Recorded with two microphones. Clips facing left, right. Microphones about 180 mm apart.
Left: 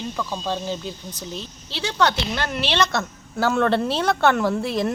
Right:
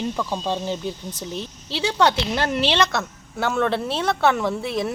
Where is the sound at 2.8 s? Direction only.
Centre (ahead or behind).